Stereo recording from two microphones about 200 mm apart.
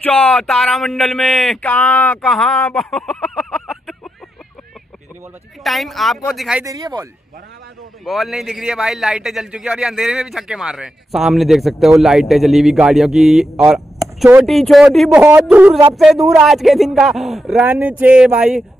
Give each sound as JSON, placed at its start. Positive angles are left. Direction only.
{"t": 0.0, "sound": "a man's voice", "side_deg": 5}
{"t": 5.6, "sound": "a man's voice", "side_deg": 0}
{"t": 6.6, "sound": "speech", "side_deg": -20}
{"t": 8.0, "sound": "a man's voice", "side_deg": 0}
{"t": 13.7, "sound": "a sound", "side_deg": -15}
{"t": 14.4, "sound": "a man's voice", "side_deg": 0}